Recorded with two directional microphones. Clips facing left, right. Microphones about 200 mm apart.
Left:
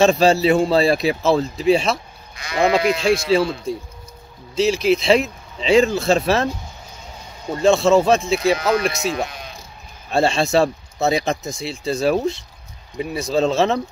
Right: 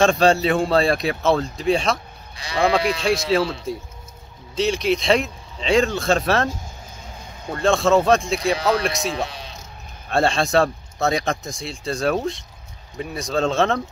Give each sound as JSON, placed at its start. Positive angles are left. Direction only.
{"t": 0.0, "sound": "speech", "side_deg": 5}
{"t": 2.3, "sound": "speech", "side_deg": -30}
{"t": 3.0, "sound": "speech", "side_deg": 0}
{"t": 7.6, "sound": "speech", "side_deg": 0}
{"t": 9.1, "sound": "speech", "side_deg": -30}
{"t": 10.0, "sound": "speech", "side_deg": 0}